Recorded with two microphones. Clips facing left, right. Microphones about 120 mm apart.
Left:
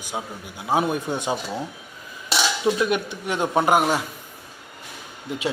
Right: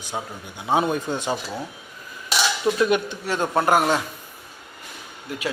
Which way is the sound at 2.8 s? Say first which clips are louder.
Right 2 dB; 5° left (ahead or behind).